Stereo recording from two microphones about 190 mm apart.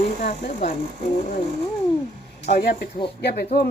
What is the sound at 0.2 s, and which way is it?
Speech, 55° left (ahead or behind).